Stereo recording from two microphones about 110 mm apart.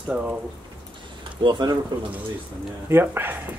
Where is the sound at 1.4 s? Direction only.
45° right (ahead or behind).